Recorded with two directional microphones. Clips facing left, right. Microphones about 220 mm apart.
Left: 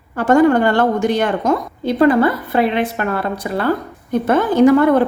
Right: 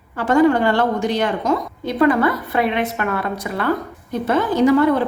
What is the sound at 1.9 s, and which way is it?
A woman's voice, 30° left (ahead or behind).